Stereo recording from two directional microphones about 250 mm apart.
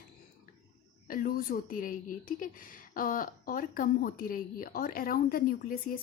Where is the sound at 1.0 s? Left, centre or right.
Left.